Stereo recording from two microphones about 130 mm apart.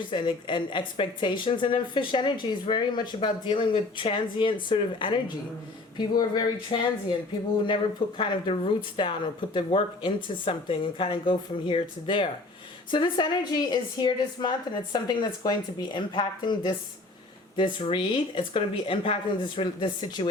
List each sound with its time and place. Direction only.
0.1 s speech: 40° left (ahead or behind)
8.2 s speech: 40° left (ahead or behind)